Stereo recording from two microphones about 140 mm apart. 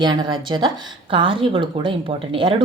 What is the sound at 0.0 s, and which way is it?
A woman's voice, 35° right (ahead or behind).